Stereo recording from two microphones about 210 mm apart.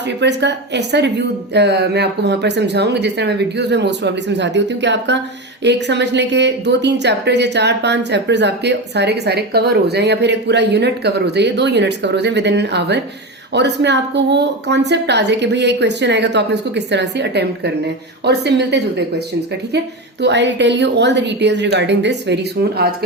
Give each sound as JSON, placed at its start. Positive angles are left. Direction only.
{"t": 0.2, "sound": "a woman's voice", "side_deg": -55}
{"t": 20.2, "sound": "a woman's voice", "side_deg": -55}